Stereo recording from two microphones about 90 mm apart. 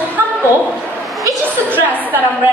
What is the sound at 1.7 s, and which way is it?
Speech, 20° right (ahead or behind).